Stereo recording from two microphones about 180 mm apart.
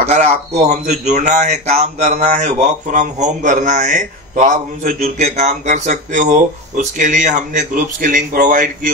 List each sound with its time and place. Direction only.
0.0 s speech: 40° right (ahead or behind)